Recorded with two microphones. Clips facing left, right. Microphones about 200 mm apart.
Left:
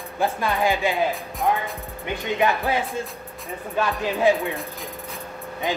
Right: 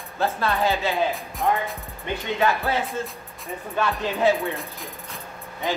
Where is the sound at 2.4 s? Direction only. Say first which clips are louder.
Left 1 dB; 15° left (ahead or behind).